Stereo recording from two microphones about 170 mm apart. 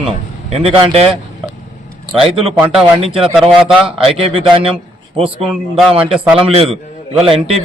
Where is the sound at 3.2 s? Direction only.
5° right (ahead or behind).